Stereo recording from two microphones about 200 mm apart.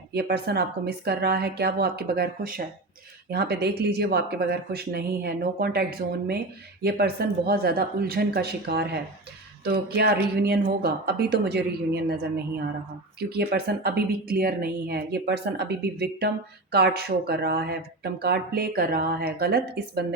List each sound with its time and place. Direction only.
0.1 s speech: 55° right (ahead or behind)